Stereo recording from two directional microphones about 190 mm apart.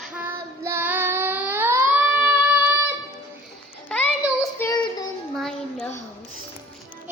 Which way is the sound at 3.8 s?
5° left (ahead or behind).